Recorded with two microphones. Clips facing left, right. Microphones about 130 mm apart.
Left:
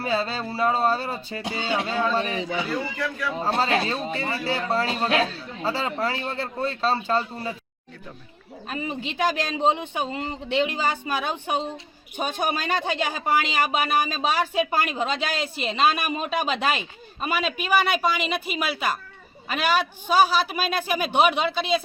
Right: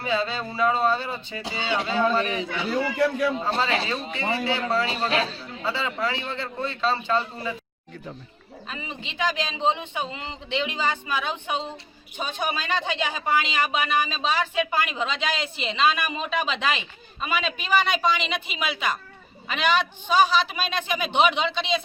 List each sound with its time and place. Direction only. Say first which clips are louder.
0.0 s speech: even; 40° left (ahead or behind)
2.5 s speech: right 1 dB; 65° right (ahead or behind)
3.4 s speech: left 2 dB; 45° left (ahead or behind)
8.6 s speech: left 7 dB; 50° left (ahead or behind)
17.3 s a man's voice: left 1 dB; 10° left (ahead or behind)